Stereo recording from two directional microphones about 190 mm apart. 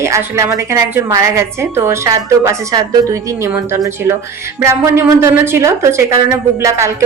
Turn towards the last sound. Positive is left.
turn(degrees=-15)  # may be behind; listen again after turning